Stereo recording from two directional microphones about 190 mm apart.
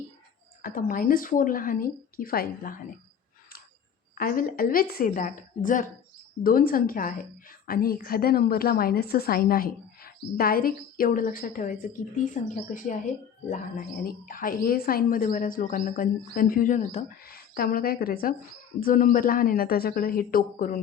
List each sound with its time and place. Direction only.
0.6 s a woman's voice: 45° left (ahead or behind)
4.2 s a woman's voice: 50° left (ahead or behind)
17.3 s a woman's voice: 50° left (ahead or behind)